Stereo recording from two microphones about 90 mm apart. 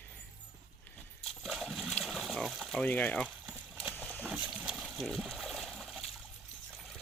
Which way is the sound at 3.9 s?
20° left (ahead or behind).